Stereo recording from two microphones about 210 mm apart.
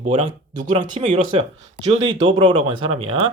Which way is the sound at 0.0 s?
25° right (ahead or behind).